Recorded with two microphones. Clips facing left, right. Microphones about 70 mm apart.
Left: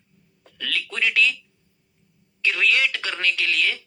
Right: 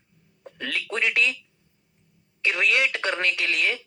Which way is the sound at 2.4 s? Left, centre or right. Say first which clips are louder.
Left 1 dB; centre.